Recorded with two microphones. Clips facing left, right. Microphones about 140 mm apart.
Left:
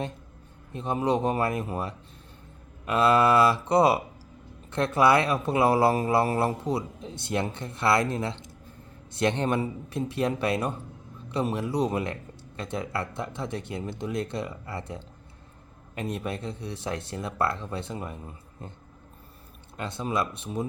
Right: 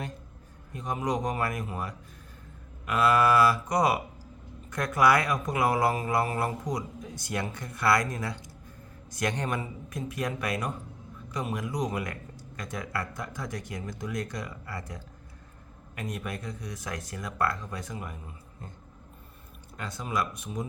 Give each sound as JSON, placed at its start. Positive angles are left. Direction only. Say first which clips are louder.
{"t": 0.7, "sound": "speech", "louder": "left 5 dB", "side_deg": 25}
{"t": 19.7, "sound": "speech", "louder": "left 3 dB", "side_deg": 25}